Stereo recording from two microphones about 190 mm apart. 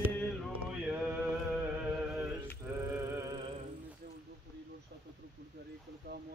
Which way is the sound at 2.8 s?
10° right (ahead or behind).